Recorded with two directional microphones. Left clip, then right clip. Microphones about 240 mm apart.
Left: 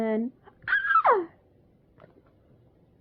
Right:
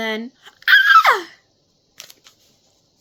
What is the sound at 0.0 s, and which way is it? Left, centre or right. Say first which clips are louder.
Speech: right 4 dB; centre.